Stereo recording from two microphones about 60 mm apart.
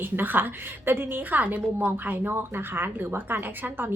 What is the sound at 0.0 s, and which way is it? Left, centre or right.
A woman's voice, right.